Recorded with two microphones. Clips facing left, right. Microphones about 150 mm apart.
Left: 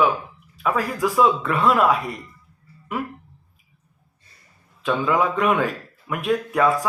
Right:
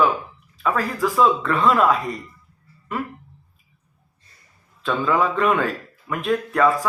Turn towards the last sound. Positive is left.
turn(degrees=10)  # may be behind; listen again after turning